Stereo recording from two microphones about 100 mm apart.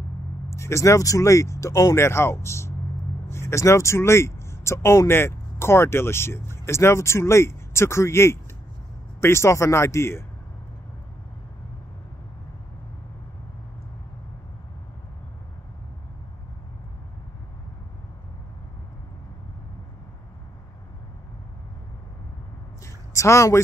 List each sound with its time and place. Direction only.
0.5 s speech: 30° left (ahead or behind)
23.1 s speech: 30° left (ahead or behind)